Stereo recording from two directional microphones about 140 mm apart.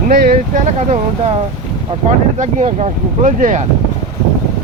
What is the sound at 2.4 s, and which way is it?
Speech, 55° right (ahead or behind).